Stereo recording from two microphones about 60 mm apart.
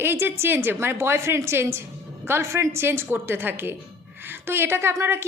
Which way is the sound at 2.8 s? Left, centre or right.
Right.